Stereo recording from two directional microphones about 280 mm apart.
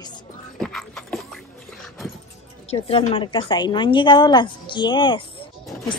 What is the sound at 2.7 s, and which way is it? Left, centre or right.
A woman's voice, centre.